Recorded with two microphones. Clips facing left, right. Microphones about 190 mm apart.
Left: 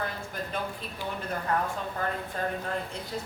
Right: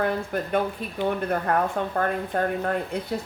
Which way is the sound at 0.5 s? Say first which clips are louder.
Right 11 dB; 60° right (ahead or behind).